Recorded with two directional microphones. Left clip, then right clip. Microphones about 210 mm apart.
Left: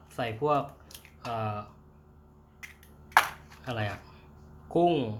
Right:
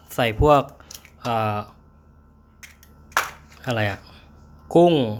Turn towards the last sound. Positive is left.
turn(degrees=-30)  # may be behind; listen again after turning